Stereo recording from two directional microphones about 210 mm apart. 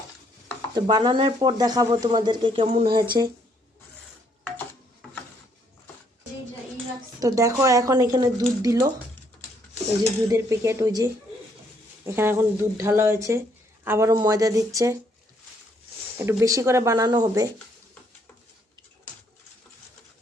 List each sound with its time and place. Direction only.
0.7 s speech: 20° right (ahead or behind)
7.2 s speech: 15° right (ahead or behind)
10.2 s speech: 15° right (ahead or behind)
16.1 s speech: 15° right (ahead or behind)